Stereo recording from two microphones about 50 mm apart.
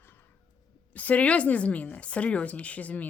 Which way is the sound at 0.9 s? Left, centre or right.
Left.